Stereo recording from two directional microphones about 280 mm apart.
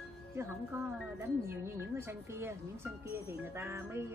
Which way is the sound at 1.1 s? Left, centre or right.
Centre.